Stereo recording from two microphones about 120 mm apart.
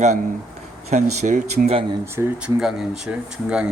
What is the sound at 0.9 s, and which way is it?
Speech, 70° right (ahead or behind).